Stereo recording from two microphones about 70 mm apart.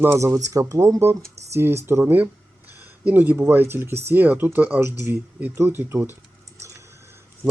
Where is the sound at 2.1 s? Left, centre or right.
Right.